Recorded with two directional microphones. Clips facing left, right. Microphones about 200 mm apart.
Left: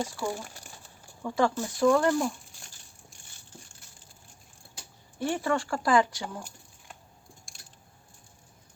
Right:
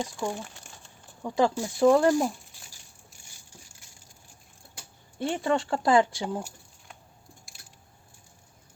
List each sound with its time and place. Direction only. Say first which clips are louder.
0.0 s speech: right 1 dB; 5° left (ahead or behind)
1.2 s speech: right 2 dB; 15° right (ahead or behind)
5.2 s speech: right 2 dB; 25° right (ahead or behind)